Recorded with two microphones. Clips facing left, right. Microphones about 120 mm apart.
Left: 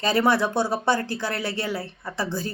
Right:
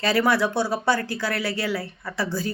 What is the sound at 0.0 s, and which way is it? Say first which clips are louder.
Speech: even; 20° left (ahead or behind).